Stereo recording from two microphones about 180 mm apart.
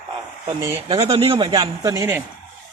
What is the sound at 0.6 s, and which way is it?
Speech, 15° right (ahead or behind).